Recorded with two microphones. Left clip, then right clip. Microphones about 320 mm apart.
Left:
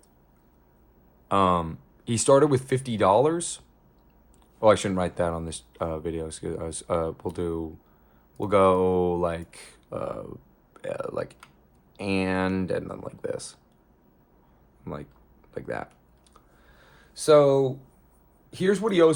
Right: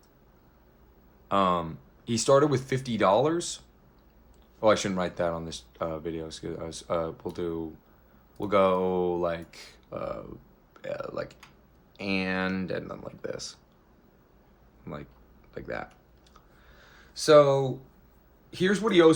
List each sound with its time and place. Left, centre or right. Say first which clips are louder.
1.3 s speech: left 3 dB; left
4.6 s speech: left 3 dB; left
14.9 s speech: left 3 dB; left
16.3 s a sound: even; left
18.5 s speech: even; centre